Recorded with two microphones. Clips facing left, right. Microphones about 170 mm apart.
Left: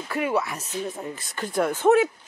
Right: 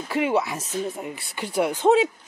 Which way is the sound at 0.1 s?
25° right (ahead or behind).